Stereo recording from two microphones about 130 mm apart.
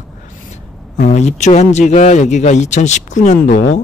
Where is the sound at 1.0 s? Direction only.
60° left (ahead or behind).